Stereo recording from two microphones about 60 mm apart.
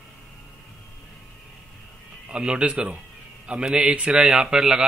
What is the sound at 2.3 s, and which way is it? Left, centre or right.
A man's voice, centre.